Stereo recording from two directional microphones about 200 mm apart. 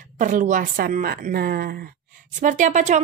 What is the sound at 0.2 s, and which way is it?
A woman's voice, 40° right (ahead or behind).